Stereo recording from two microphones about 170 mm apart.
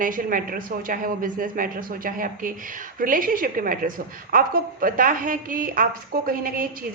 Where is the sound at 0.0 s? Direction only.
55° right (ahead or behind).